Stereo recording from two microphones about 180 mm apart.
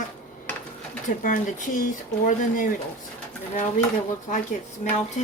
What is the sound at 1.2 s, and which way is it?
Speech, 45° left (ahead or behind).